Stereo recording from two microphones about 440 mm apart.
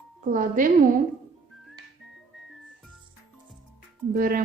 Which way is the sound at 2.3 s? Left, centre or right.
Centre.